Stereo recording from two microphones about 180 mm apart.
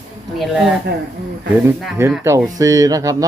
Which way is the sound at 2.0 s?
15° right (ahead or behind).